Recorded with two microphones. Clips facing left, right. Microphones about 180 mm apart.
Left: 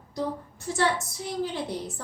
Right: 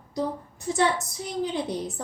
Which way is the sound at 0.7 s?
20° right (ahead or behind).